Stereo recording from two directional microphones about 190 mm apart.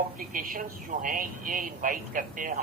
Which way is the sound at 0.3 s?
45° right (ahead or behind).